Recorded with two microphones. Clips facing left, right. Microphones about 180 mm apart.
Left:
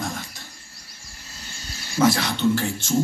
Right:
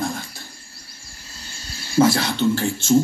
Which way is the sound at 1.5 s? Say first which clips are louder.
Right 1 dB; 30° right (ahead or behind).